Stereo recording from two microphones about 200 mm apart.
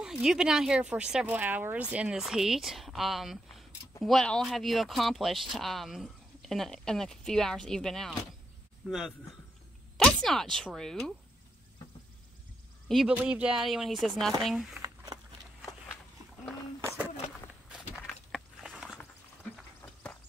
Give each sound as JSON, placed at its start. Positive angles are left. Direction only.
{"t": 0.0, "sound": "a man's voice", "side_deg": -5}
{"t": 12.8, "sound": "speech", "side_deg": 0}
{"t": 16.8, "sound": "a sound", "side_deg": -5}
{"t": 19.5, "sound": "horse", "side_deg": 5}